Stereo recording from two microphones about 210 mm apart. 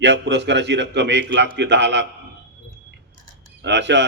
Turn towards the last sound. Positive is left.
turn(degrees=-55)  # may be behind; listen again after turning